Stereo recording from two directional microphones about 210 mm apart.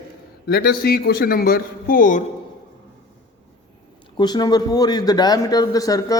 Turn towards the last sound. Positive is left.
turn(degrees=15)  # may be behind; listen again after turning